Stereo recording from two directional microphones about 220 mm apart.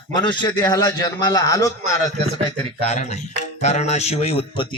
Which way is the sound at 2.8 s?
30° left (ahead or behind).